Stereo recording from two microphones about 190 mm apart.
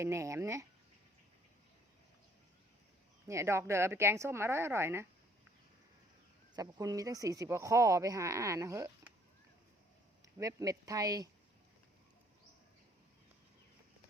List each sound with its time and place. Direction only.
0.0 s speech: 15° right (ahead or behind)
3.2 s speech: 15° right (ahead or behind)
6.6 s speech: 20° right (ahead or behind)
10.3 s speech: 20° right (ahead or behind)